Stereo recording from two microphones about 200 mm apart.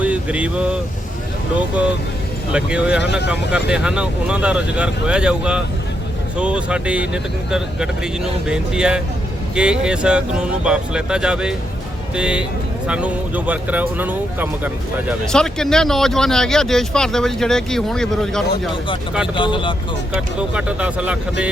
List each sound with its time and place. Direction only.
0.0 s speech: 5° right (ahead or behind)
2.5 s speech: 5° right (ahead or behind)
15.3 s speech: 5° left (ahead or behind)
19.4 s speech: 25° left (ahead or behind)
20.1 s speech: 5° right (ahead or behind)